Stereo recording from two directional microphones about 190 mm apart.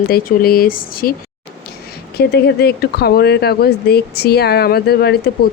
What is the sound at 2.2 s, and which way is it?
Speech, 55° left (ahead or behind).